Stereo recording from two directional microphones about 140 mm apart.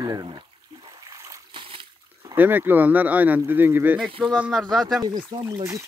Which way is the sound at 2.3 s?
15° right (ahead or behind).